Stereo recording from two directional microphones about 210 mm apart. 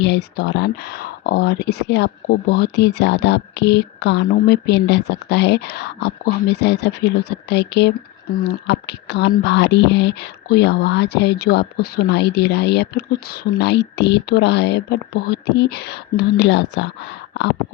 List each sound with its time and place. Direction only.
0.0 s speech: 55° left (ahead or behind)